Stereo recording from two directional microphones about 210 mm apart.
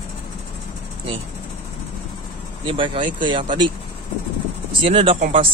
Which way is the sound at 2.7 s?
25° right (ahead or behind).